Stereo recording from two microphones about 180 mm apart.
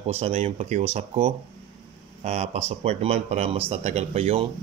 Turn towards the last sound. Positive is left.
turn(degrees=-35)  # may be behind; listen again after turning